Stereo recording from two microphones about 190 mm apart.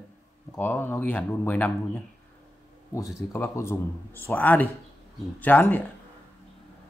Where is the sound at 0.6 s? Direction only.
10° left (ahead or behind).